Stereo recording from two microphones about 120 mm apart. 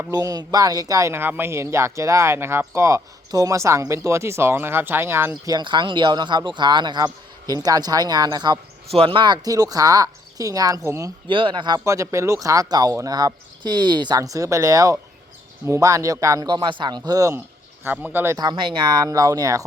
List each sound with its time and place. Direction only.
0.1 s speech: 30° right (ahead or behind)
5.5 s speech: 40° right (ahead or behind)
8.9 s speech: 50° right (ahead or behind); by 11.1 s 25° right (ahead or behind)
11.3 s speech: 45° right (ahead or behind)
11.9 s speech: 25° right (ahead or behind)
16.5 s speech: 40° right (ahead or behind)
17.8 s speech: 15° right (ahead or behind)
18.3 s speech: 40° right (ahead or behind)